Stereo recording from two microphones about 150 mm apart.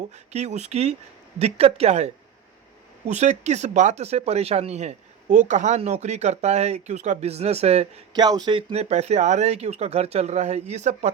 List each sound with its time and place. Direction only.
0.1 s speech: 50° right (ahead or behind)
3.1 s speech: 50° right (ahead or behind)
8.1 s speech: 25° right (ahead or behind); by 11.1 s 50° right (ahead or behind)